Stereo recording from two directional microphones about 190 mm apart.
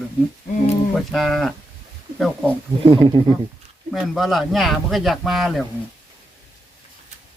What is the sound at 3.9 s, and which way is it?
Speech, centre (ahead or behind).